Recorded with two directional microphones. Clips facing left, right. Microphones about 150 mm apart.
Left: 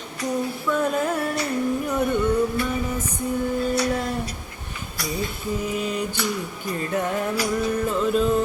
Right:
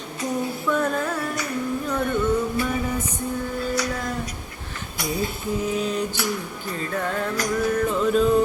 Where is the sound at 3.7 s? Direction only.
25° left (ahead or behind).